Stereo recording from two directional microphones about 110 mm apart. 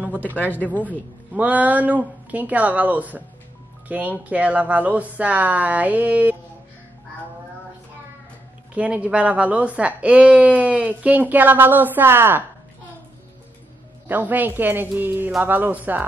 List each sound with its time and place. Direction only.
0.8 s a woman's voice: 15° right (ahead or behind)
8.7 s a woman's voice: 10° right (ahead or behind)
14.0 s a woman's voice: 15° right (ahead or behind)